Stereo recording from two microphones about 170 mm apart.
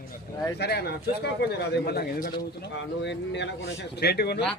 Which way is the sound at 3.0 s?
90° left.